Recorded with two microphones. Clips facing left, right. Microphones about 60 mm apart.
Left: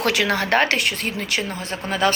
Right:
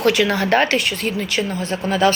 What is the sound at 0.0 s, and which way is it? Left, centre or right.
Speech, left.